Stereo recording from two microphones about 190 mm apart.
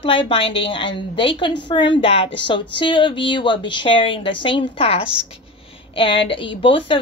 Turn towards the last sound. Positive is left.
turn(degrees=25)  # may be behind; listen again after turning